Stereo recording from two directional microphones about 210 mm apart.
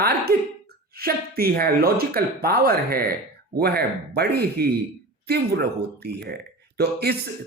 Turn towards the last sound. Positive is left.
turn(degrees=-50)  # may be behind; listen again after turning